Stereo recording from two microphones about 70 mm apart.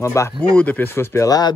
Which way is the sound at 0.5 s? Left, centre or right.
Left.